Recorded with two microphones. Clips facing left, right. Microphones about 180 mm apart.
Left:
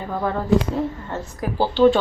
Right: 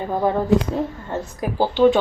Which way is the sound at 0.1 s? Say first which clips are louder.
Right 4 dB; 20° right (ahead or behind).